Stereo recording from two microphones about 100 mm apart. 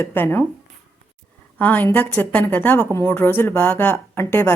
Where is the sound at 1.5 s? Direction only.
15° left (ahead or behind).